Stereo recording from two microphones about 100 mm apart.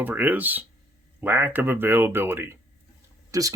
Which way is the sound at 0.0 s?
15° right (ahead or behind).